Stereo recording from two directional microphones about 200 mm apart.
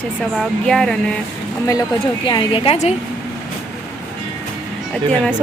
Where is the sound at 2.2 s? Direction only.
25° left (ahead or behind).